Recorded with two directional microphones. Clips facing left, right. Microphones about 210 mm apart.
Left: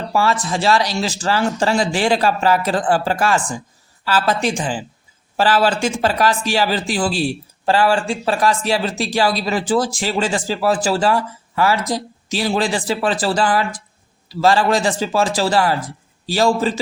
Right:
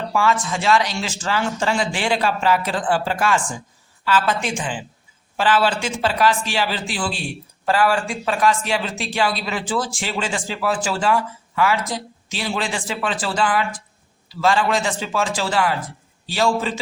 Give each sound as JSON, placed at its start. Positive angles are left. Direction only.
{"t": 0.1, "sound": "speech", "side_deg": 35}